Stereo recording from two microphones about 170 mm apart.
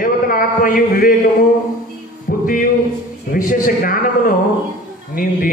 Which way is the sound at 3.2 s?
55° left (ahead or behind).